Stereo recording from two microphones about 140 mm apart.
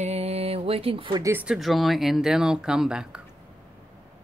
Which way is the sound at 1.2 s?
15° right (ahead or behind).